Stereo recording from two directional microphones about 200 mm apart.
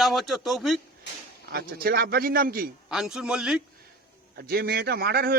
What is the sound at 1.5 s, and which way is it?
A man's voice, 50° right (ahead or behind).